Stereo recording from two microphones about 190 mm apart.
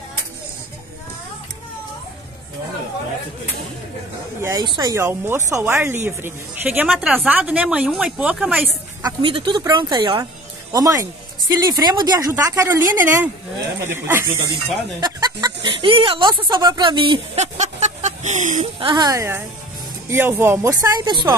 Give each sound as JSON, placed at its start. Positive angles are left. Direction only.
{"t": 4.4, "sound": "speech", "side_deg": -15}
{"t": 9.0, "sound": "speech", "side_deg": -25}
{"t": 18.9, "sound": "speech", "side_deg": -20}